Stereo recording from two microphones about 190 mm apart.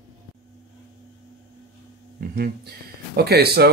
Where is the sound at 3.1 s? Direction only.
55° right (ahead or behind).